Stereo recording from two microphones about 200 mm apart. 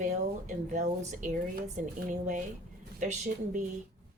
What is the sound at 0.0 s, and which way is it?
Speech, 40° right (ahead or behind).